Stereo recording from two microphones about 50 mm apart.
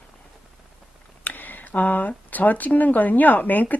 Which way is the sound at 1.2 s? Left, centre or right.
Left.